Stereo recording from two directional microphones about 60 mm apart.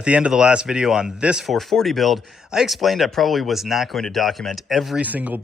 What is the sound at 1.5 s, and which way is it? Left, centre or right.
Speech, centre.